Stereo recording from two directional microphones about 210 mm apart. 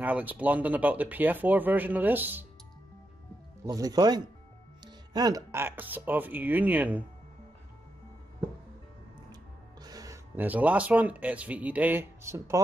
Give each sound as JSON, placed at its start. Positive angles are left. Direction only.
{"t": 0.0, "sound": "speech", "side_deg": -10}
{"t": 3.6, "sound": "speech", "side_deg": -15}
{"t": 9.3, "sound": "speech", "side_deg": -20}